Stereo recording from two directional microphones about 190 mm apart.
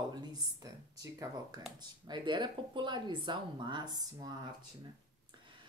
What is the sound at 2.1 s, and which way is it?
Speech, 25° right (ahead or behind).